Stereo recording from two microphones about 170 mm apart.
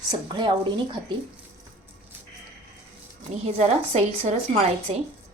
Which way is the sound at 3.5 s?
40° right (ahead or behind).